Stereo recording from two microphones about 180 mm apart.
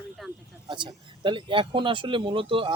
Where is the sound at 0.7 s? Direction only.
25° right (ahead or behind).